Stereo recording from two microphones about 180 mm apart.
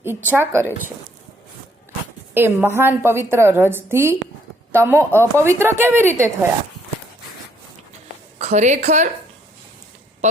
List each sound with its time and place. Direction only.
0.0 s a woman's voice: 10° right (ahead or behind)
2.3 s a woman's voice: 10° right (ahead or behind)
8.4 s a woman's voice: 40° right (ahead or behind)